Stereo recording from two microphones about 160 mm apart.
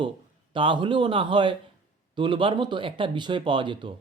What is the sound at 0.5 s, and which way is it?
Speech, 30° right (ahead or behind).